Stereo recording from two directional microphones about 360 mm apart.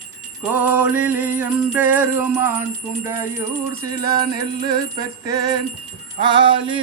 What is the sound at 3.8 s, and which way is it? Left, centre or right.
Music, centre.